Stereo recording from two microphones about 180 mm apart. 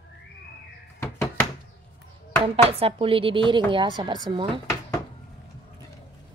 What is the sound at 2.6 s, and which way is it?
Speech, 35° right (ahead or behind).